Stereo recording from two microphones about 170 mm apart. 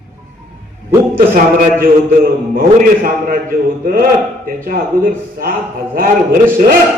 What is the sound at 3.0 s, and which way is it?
A man's voice, 55° right (ahead or behind).